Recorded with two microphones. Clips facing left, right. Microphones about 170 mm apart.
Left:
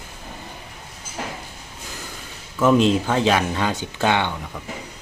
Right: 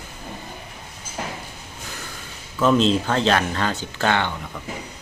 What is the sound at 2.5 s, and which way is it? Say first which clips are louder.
Speech: left 1 dB; 15° left (ahead or behind).